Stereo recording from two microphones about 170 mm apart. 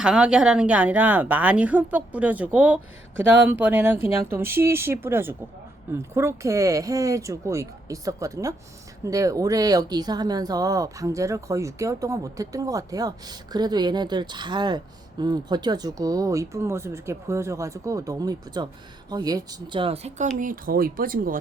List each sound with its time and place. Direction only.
0.0 s speech: 5° right (ahead or behind); by 21.3 s 55° right (ahead or behind)